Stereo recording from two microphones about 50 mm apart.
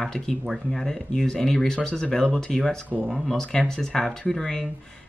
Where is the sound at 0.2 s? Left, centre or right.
Centre.